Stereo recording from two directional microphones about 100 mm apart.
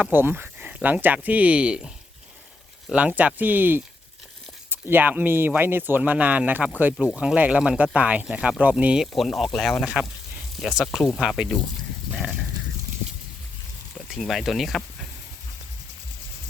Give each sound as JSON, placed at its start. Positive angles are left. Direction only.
{"t": 0.0, "sound": "speech", "side_deg": -20}
{"t": 2.9, "sound": "speech", "side_deg": -15}
{"t": 9.1, "sound": "speech", "side_deg": 0}
{"t": 14.1, "sound": "speech", "side_deg": 0}